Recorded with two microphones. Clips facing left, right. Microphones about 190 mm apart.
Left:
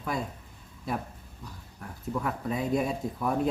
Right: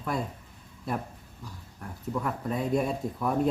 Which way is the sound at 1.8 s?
Centre (ahead or behind).